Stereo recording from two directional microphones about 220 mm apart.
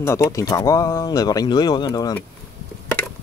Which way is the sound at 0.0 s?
15° left (ahead or behind).